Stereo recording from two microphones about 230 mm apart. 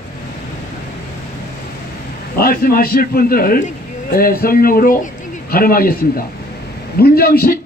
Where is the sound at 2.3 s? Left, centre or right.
Left.